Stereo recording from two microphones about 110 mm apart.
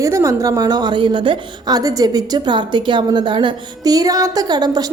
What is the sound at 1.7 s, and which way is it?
Speech, 35° right (ahead or behind).